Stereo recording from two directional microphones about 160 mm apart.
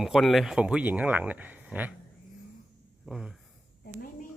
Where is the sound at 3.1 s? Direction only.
5° right (ahead or behind).